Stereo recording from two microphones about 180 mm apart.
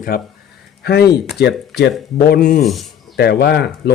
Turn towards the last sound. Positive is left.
turn(degrees=65)  # may be behind; listen again after turning